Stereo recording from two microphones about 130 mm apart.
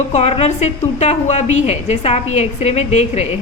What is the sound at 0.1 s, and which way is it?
A woman's voice, 55° left (ahead or behind).